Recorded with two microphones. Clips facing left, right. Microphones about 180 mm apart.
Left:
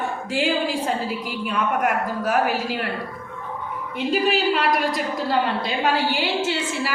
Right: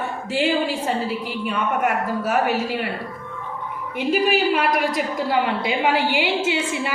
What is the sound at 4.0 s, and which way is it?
A woman's voice, 10° right (ahead or behind).